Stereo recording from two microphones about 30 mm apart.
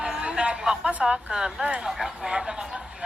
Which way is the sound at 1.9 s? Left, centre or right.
Centre.